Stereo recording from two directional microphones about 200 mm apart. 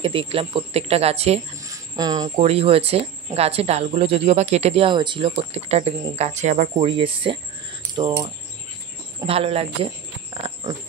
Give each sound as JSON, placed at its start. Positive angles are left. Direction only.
{"t": 0.0, "sound": "speech", "side_deg": -25}
{"t": 1.6, "sound": "cricket", "side_deg": -20}
{"t": 2.3, "sound": "speech", "side_deg": -30}
{"t": 6.9, "sound": "speech", "side_deg": -25}
{"t": 10.3, "sound": "a sound", "side_deg": -30}